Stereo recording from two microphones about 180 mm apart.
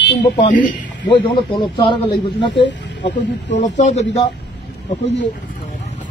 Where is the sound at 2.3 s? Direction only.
75° left (ahead or behind).